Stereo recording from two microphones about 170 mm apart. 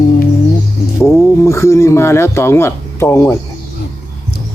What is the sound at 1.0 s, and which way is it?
Speech, 15° left (ahead or behind).